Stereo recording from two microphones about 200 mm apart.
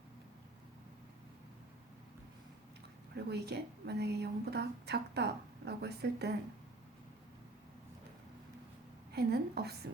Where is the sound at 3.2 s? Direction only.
55° right (ahead or behind).